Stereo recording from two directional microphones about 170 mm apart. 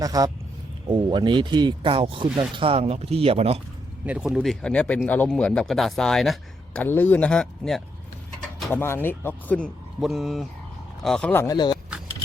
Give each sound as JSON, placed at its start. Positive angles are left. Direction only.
{"t": 0.0, "sound": "speech", "side_deg": -20}
{"t": 4.0, "sound": "speech", "side_deg": -5}
{"t": 6.8, "sound": "speech", "side_deg": 10}
{"t": 10.0, "sound": "speech", "side_deg": 0}
{"t": 11.5, "sound": "speech", "side_deg": 25}